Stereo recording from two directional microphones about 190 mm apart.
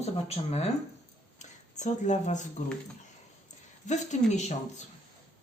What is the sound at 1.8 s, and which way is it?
Speech, 40° left (ahead or behind).